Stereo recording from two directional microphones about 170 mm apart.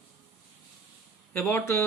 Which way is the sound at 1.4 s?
15° left (ahead or behind).